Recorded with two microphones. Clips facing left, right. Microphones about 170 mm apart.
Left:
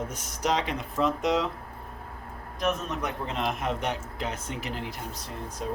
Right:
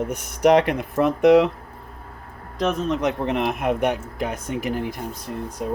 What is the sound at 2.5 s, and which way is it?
Speech, 90° right.